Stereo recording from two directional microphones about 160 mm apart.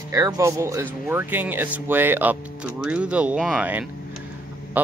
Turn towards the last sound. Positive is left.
turn(degrees=-10)  # may be behind; listen again after turning